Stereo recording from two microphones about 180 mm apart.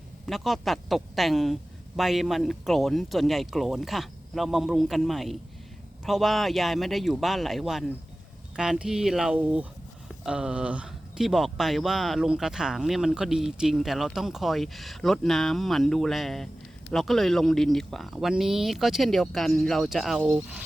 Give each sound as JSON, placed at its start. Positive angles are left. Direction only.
{"t": 0.3, "sound": "speech", "side_deg": 0}